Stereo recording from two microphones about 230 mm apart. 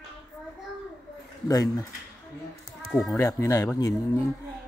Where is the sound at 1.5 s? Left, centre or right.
Centre.